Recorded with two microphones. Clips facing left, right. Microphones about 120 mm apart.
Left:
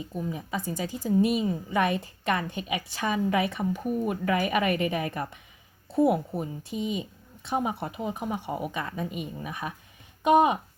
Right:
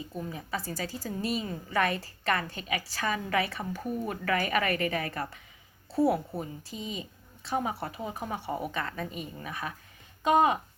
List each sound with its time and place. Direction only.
0.1 s a woman's voice: 10° left (ahead or behind)